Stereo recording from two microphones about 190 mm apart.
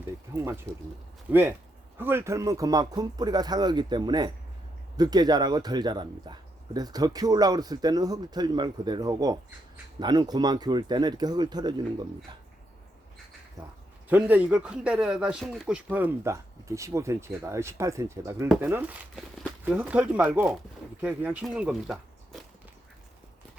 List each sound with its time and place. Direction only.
0.3 s speech: 15° right (ahead or behind)
14.1 s speech: 10° right (ahead or behind)